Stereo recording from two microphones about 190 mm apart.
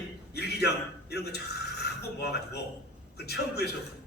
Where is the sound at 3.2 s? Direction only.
60° left (ahead or behind).